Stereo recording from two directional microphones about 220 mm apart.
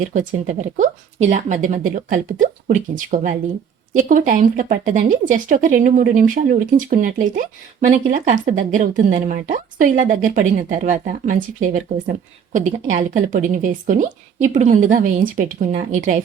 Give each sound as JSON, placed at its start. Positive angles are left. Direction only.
{"t": 0.1, "sound": "speech", "side_deg": -35}